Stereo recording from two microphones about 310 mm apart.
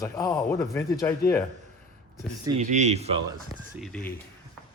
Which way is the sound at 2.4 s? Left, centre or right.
Right.